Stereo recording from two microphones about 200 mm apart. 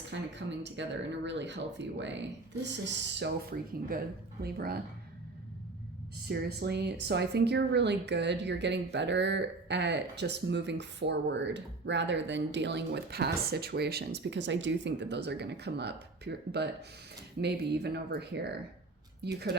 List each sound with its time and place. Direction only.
0.1 s a woman's voice: 60° right (ahead or behind)
4.4 s speech: 50° right (ahead or behind)
6.2 s a woman's voice: 55° right (ahead or behind)